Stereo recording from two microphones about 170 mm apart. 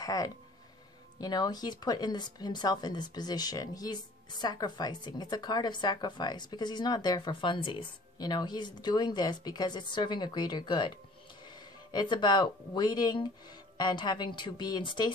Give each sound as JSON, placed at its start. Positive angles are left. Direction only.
{"t": 0.0, "sound": "speech", "side_deg": 20}